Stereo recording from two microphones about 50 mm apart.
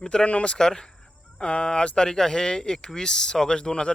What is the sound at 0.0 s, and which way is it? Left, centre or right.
Speech, centre.